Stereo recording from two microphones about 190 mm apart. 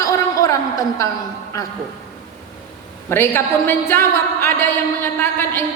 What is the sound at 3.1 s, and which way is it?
A woman's voice, 10° left (ahead or behind).